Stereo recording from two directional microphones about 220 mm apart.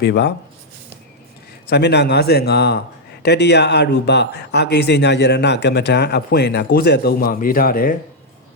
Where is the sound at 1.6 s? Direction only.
50° left (ahead or behind).